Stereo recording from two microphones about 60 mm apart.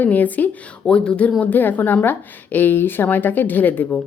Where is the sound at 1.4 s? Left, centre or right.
Left.